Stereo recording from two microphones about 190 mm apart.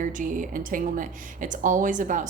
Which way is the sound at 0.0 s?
45° right (ahead or behind).